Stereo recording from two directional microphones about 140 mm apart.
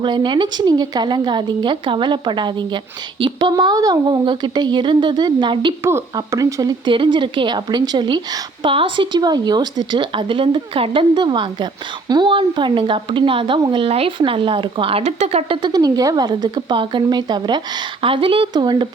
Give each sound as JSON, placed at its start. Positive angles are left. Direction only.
{"t": 0.0, "sound": "speech", "side_deg": -35}
{"t": 5.8, "sound": "speech", "side_deg": -20}